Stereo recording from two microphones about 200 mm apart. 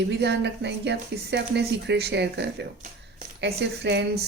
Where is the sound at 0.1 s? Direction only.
55° right (ahead or behind).